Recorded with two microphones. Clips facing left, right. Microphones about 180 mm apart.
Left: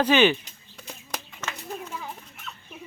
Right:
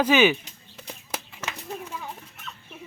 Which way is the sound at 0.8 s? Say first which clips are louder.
Right 1 dB; 10° right (ahead or behind).